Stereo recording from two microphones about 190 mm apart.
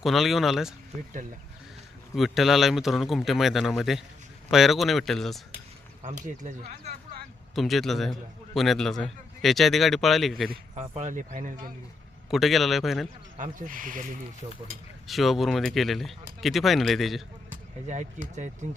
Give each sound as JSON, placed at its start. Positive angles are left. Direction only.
{"t": 0.0, "sound": "speech", "side_deg": 0}
{"t": 2.1, "sound": "speech", "side_deg": 0}
{"t": 6.0, "sound": "speech", "side_deg": -40}
{"t": 7.5, "sound": "speech", "side_deg": 0}
{"t": 10.8, "sound": "speech", "side_deg": -35}
{"t": 12.3, "sound": "speech", "side_deg": 0}
{"t": 13.4, "sound": "speech", "side_deg": -45}
{"t": 15.0, "sound": "speech", "side_deg": 0}
{"t": 17.5, "sound": "speech", "side_deg": -40}